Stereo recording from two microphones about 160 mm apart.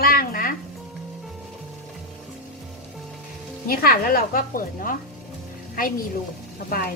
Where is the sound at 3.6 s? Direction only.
65° left (ahead or behind).